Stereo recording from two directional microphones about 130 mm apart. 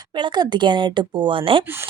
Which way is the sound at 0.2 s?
35° right (ahead or behind).